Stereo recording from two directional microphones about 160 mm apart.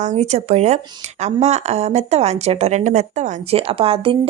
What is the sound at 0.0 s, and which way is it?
Speech, 45° right (ahead or behind).